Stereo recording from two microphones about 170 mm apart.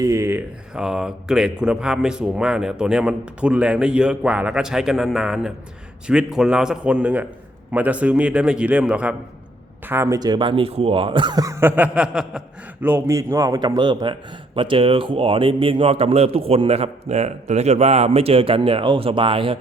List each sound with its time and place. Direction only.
0.0 s a man's voice: 15° right (ahead or behind)